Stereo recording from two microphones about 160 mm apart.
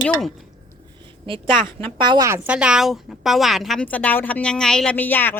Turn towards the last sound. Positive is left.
turn(degrees=10)  # may be behind; listen again after turning